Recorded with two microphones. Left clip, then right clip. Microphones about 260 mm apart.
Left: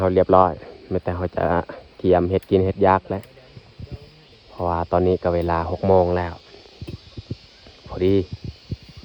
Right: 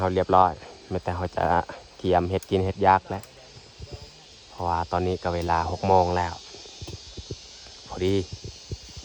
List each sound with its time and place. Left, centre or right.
0.0 s speech: centre
4.5 s speech: centre
7.9 s speech: centre